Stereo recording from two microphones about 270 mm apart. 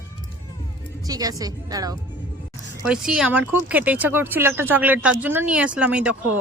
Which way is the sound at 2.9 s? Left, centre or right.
Centre.